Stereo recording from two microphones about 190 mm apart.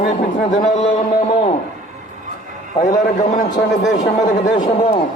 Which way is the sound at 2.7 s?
20° left (ahead or behind).